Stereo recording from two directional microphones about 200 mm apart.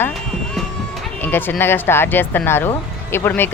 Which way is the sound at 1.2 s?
10° left (ahead or behind).